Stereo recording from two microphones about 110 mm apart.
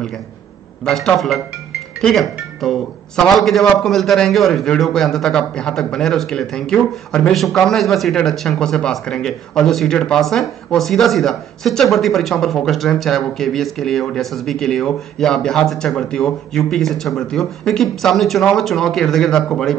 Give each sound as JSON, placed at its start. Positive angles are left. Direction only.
{"t": 0.8, "sound": "a man's voice", "side_deg": 5}